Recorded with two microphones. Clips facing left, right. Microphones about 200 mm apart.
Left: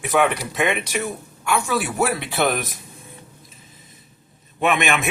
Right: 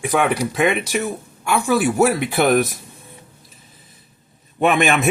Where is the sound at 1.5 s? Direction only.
45° right (ahead or behind).